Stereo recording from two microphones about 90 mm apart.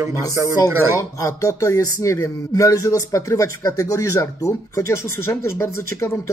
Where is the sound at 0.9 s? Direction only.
35° left (ahead or behind).